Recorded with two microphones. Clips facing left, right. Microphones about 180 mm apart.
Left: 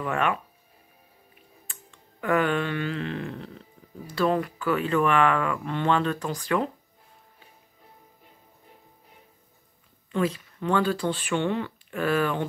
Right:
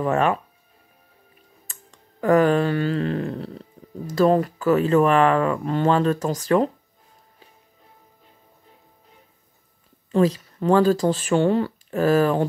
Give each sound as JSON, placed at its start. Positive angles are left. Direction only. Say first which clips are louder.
{"t": 0.0, "sound": "speech", "louder": "right 6 dB", "side_deg": -35}
{"t": 1.7, "sound": "a sound", "louder": "right 1 dB", "side_deg": -40}
{"t": 4.1, "sound": "speech", "louder": "right 6 dB", "side_deg": -40}
{"t": 10.1, "sound": "speech", "louder": "right 7 dB", "side_deg": -40}